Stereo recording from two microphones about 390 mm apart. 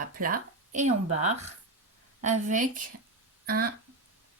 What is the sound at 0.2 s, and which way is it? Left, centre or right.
Speech, centre.